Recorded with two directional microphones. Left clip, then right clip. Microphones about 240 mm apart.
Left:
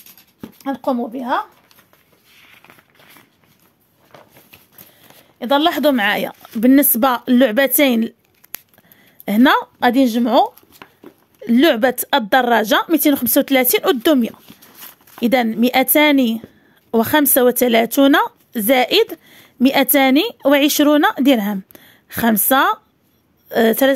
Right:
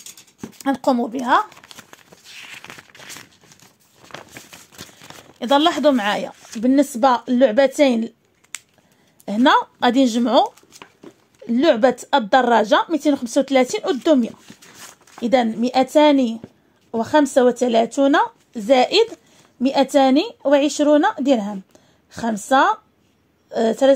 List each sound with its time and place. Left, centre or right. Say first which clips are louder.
0.6 s speech: right 2 dB; centre
2.3 s a sound: right 9 dB; right
4.1 s crumpling: right 7 dB; right
5.4 s speech: left 1 dB; centre
5.8 s speech: left 2 dB; left
9.2 s speech: left 1 dB; left
11.4 s speech: left 1 dB; left